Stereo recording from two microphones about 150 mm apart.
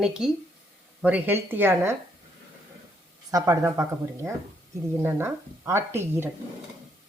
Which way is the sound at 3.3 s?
20° right (ahead or behind).